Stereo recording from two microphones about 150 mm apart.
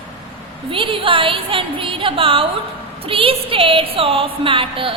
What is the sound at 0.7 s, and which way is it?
A woman's voice, 35° right (ahead or behind).